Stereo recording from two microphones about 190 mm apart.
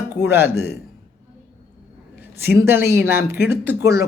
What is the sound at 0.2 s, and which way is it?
Speech, 10° right (ahead or behind).